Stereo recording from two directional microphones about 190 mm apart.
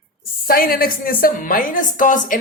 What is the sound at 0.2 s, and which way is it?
Speech, 50° left (ahead or behind).